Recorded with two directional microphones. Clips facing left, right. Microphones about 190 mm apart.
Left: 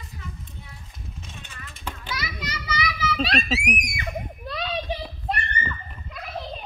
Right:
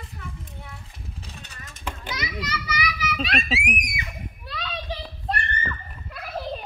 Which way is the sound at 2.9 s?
30° left (ahead or behind).